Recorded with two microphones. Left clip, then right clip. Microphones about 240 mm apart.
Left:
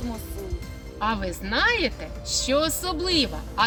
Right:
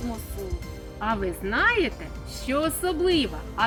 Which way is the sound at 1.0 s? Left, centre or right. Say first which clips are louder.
Even; left.